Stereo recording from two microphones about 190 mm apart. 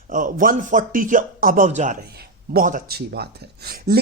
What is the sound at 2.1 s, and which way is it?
Speech, 55° right (ahead or behind).